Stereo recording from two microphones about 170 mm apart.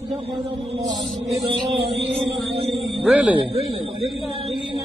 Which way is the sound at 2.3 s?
Centre (ahead or behind).